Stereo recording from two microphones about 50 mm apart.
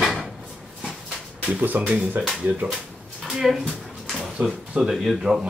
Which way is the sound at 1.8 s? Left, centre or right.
Right.